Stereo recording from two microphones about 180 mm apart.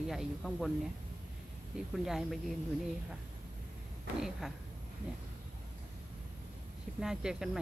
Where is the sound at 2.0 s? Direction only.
Centre (ahead or behind).